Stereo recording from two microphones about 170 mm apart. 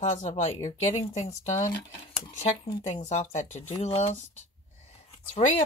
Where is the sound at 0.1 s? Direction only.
40° left (ahead or behind).